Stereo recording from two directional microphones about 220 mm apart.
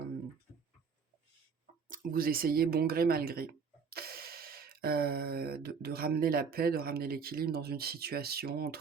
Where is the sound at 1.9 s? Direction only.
40° right (ahead or behind).